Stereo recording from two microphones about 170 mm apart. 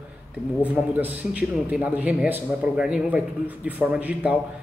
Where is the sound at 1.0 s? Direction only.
10° right (ahead or behind).